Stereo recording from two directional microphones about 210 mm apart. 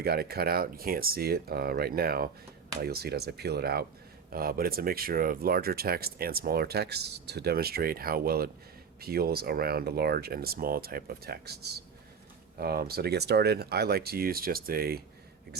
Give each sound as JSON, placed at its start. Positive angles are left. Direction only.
{"t": 0.0, "sound": "speech", "side_deg": -50}